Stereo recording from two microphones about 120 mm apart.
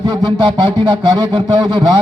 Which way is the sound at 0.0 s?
40° right (ahead or behind).